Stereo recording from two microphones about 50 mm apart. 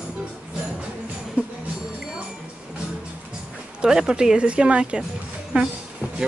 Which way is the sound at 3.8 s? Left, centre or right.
Centre.